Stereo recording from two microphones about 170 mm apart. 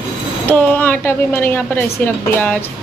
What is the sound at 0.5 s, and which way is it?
A woman's voice, 10° left (ahead or behind).